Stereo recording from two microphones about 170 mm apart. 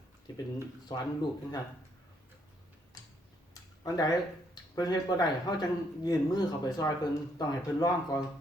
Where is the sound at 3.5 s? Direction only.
20° left (ahead or behind).